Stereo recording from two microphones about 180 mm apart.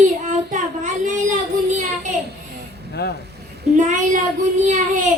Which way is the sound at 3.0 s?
65° left (ahead or behind).